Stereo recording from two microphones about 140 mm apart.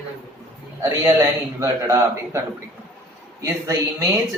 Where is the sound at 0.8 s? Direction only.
25° right (ahead or behind).